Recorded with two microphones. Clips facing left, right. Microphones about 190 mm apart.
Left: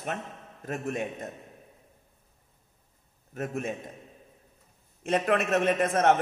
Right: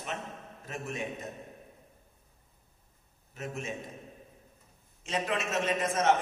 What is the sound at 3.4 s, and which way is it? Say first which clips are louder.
Speech: left 6 dB; 55° left (ahead or behind).